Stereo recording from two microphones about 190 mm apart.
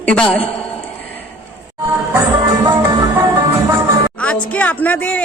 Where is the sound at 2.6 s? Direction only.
20° right (ahead or behind).